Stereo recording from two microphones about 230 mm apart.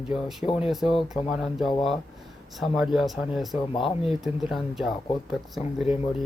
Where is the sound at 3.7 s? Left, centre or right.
Left.